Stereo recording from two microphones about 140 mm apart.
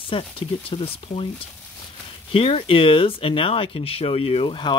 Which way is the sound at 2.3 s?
40° left (ahead or behind).